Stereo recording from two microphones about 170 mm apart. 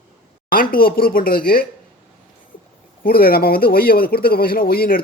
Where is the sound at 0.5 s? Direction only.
55° left (ahead or behind).